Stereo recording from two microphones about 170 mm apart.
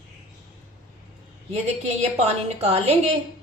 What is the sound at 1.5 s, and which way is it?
A woman's voice, 40° right (ahead or behind).